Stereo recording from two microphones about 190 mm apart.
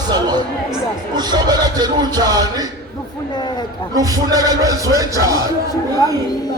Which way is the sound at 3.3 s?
25° left (ahead or behind).